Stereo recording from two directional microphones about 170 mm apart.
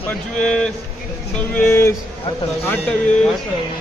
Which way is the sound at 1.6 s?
15° left (ahead or behind).